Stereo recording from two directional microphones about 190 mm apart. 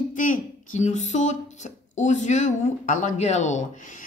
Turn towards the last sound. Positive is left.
turn(degrees=40)  # may be behind; listen again after turning